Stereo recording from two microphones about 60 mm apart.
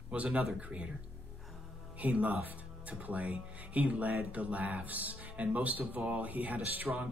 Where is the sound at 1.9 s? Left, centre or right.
Right.